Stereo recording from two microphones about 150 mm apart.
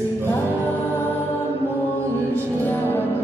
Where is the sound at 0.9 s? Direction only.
15° left (ahead or behind).